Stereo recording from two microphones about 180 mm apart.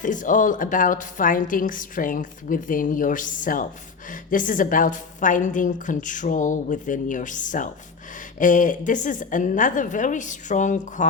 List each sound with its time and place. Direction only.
0.0 s a woman's voice: 45° left (ahead or behind)